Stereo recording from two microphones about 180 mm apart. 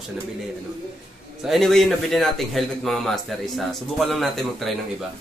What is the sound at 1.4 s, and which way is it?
A man's voice, centre (ahead or behind).